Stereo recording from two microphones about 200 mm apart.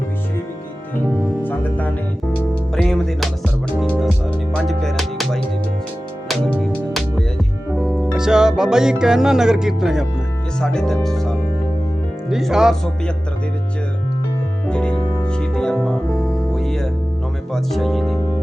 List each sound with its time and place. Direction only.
1.4 s music: 10° left (ahead or behind)
10.6 s speech: 5° left (ahead or behind)
14.7 s speech: 5° left (ahead or behind)
15.0 s music: 25° left (ahead or behind)
15.3 s music: 5° left (ahead or behind)
17.5 s speech: centre (ahead or behind)